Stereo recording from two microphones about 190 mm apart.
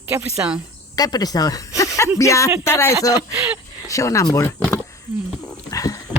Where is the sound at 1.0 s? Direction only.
20° left (ahead or behind).